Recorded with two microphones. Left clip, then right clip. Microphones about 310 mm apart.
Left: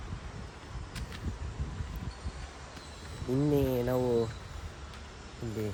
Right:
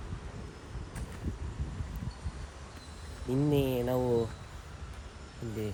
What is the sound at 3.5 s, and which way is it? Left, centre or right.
Speech, centre.